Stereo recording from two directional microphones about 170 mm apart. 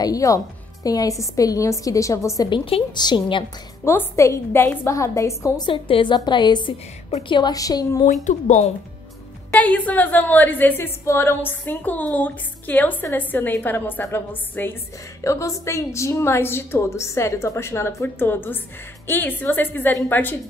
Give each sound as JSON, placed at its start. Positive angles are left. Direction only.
{"t": 0.0, "sound": "a woman's voice", "side_deg": 20}
{"t": 3.8, "sound": "a woman's voice", "side_deg": 15}
{"t": 5.7, "sound": "a woman's voice", "side_deg": 30}
{"t": 8.1, "sound": "speech", "side_deg": 45}
{"t": 9.5, "sound": "a woman's voice", "side_deg": 10}